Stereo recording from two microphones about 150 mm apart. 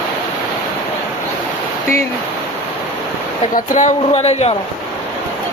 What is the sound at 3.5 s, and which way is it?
Speech, 55° left (ahead or behind).